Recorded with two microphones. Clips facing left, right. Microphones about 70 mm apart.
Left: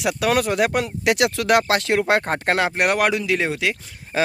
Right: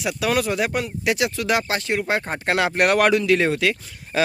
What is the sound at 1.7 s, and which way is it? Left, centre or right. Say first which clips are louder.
Speech: left 4 dB; left.